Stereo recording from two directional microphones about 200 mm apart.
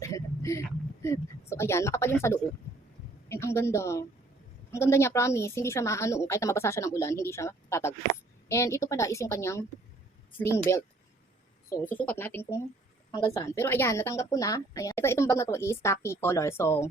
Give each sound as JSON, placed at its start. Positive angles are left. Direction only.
{"t": 0.0, "sound": "a sound", "side_deg": 15}
{"t": 1.0, "sound": "a woman's voice", "side_deg": 15}
{"t": 10.7, "sound": "a woman's voice", "side_deg": 15}